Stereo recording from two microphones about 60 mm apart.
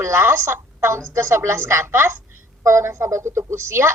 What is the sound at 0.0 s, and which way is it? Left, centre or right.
A woman's voice, right.